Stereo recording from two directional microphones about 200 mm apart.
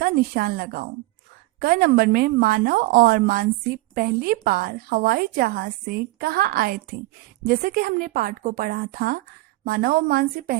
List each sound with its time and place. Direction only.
0.0 s a woman's voice: 50° right (ahead or behind)